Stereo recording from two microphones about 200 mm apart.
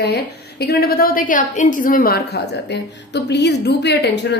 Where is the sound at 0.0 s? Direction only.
55° left (ahead or behind).